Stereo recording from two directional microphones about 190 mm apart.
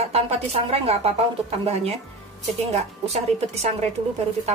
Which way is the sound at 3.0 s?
35° right (ahead or behind).